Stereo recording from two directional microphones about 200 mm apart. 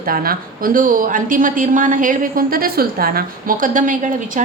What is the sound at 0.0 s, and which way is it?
A woman's voice, 45° right (ahead or behind).